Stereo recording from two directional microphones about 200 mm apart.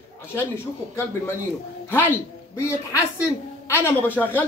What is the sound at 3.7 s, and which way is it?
Speech, 10° left (ahead or behind).